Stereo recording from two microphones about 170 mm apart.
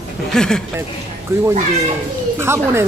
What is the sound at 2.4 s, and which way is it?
Speech, 15° right (ahead or behind).